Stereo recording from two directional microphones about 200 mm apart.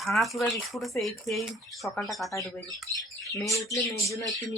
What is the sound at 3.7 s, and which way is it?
Speech, 15° left (ahead or behind).